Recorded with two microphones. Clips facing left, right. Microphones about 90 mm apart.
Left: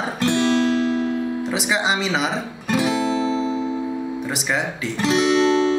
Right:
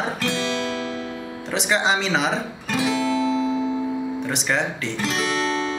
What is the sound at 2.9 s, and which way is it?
Guitar, 35° left (ahead or behind).